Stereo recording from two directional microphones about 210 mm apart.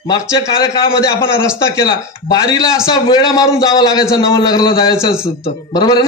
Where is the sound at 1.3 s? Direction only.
15° left (ahead or behind).